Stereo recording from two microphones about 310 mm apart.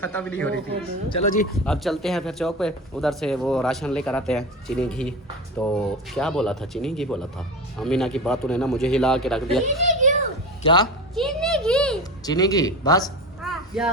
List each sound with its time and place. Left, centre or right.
0.0 s speech: centre
1.1 s speech: left
1.6 s speech: centre
9.8 s children playing: right
10.6 s a woman's voice: centre
11.1 s speech: centre
13.4 s a sound: centre